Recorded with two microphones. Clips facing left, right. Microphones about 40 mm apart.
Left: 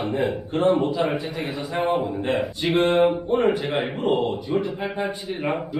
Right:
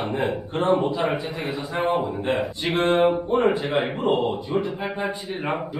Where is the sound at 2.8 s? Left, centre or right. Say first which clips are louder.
Even; right.